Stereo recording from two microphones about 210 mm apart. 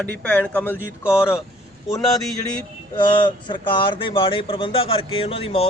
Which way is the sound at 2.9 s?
20° left (ahead or behind).